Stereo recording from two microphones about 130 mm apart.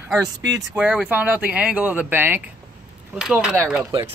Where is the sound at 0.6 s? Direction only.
10° right (ahead or behind).